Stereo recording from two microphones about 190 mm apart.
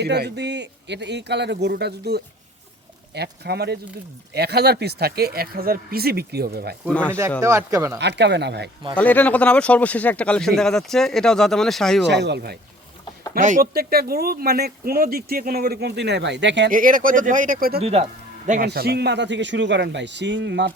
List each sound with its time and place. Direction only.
0.0 s speech: 60° right (ahead or behind)
7.4 s speech: 15° right (ahead or behind)
7.9 s speech: 65° right (ahead or behind)
9.0 s speech: 10° left (ahead or behind)
12.0 s speech: 65° right (ahead or behind)
13.3 s speech: 45° right (ahead or behind); by 16.6 s 70° right (ahead or behind)
16.6 s speech: 45° right (ahead or behind)
17.7 s speech: 30° right (ahead or behind)
18.6 s a man's voice: 55° right (ahead or behind)